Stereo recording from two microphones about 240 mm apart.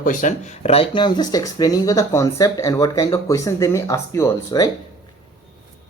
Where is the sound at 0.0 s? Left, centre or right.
Left; by 4.7 s centre.